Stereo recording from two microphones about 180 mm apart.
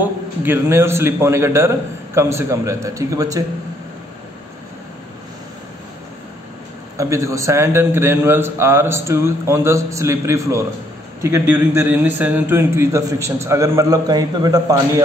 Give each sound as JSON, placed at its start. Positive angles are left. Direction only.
{"t": 0.0, "sound": "a man's voice", "side_deg": -10}
{"t": 7.0, "sound": "a man's voice", "side_deg": -15}